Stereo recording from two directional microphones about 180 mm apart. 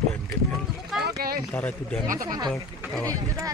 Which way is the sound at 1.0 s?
60° right (ahead or behind).